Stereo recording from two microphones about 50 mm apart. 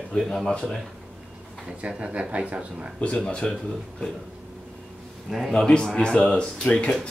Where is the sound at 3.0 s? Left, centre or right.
Left.